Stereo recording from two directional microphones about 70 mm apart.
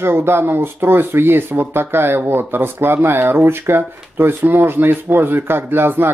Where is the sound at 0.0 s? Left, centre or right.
Right.